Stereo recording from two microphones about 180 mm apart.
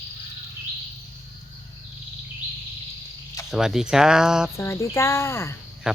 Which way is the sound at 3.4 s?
5° right (ahead or behind).